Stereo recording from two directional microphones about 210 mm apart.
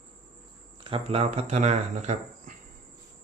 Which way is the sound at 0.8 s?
25° right (ahead or behind).